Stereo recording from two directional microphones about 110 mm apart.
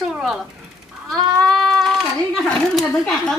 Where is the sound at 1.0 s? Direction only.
5° left (ahead or behind).